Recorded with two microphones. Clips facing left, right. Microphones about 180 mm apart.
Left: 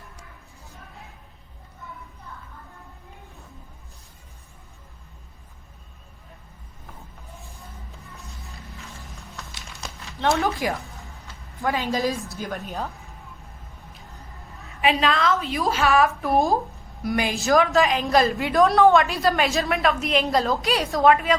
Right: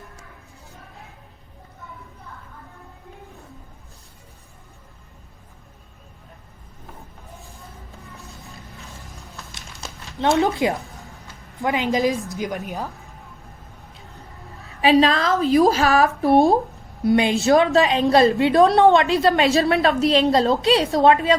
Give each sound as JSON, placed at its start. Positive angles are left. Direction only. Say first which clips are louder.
{"t": 10.2, "sound": "a woman's voice", "louder": "right 4 dB", "side_deg": -20}
{"t": 14.8, "sound": "a woman's voice", "louder": "right 5 dB", "side_deg": -35}